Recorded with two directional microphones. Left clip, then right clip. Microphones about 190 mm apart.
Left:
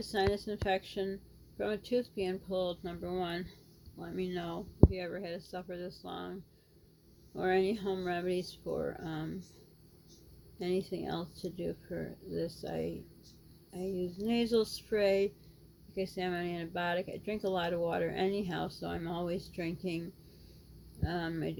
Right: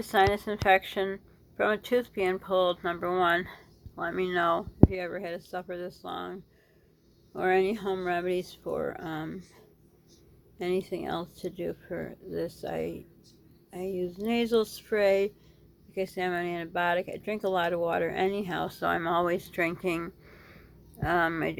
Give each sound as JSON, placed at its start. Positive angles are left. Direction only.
{"t": 0.0, "sound": "a woman's voice", "side_deg": 5}
{"t": 10.6, "sound": "a woman's voice", "side_deg": 5}
{"t": 14.0, "sound": "a woman's voice", "side_deg": 5}
{"t": 21.0, "sound": "a woman's voice", "side_deg": 5}